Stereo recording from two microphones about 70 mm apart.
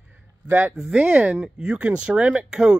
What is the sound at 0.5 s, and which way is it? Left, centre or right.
Speech, right.